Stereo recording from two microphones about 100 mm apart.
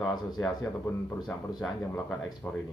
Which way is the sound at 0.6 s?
25° left (ahead or behind).